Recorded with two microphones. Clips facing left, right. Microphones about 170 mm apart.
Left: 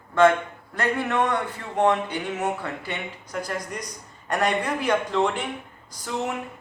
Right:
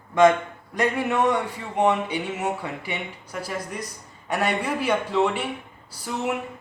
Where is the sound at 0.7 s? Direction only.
10° right (ahead or behind).